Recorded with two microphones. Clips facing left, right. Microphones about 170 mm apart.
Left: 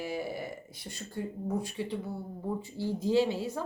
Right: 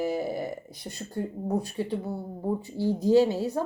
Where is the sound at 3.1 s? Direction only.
40° right (ahead or behind).